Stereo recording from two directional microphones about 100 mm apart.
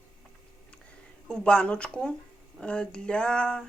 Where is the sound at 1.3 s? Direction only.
10° left (ahead or behind).